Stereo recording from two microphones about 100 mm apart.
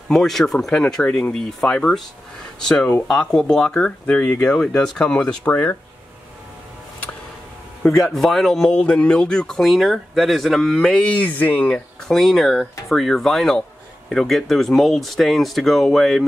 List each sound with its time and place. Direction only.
0.1 s speech: 5° left (ahead or behind)
5.4 s speech: 20° left (ahead or behind)
7.8 s speech: centre (ahead or behind)
12.1 s speech: centre (ahead or behind)